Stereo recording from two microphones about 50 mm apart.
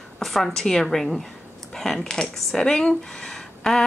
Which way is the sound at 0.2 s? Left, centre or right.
Centre.